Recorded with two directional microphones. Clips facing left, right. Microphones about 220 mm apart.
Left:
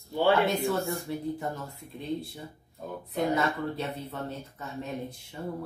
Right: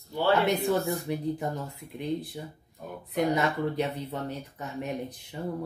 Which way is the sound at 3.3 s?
15° right (ahead or behind).